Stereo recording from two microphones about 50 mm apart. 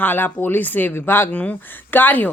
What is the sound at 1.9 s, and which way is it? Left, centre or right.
Speech, left.